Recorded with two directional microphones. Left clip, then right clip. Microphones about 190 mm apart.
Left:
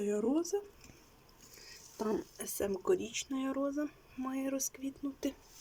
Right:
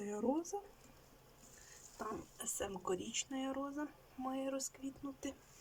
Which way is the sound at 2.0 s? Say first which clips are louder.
Left 9 dB; 25° left (ahead or behind).